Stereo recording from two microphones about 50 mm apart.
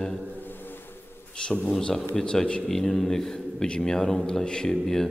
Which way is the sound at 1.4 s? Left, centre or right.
Left.